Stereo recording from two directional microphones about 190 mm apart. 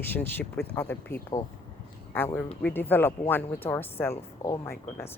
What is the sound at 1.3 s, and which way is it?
Speech, 20° left (ahead or behind).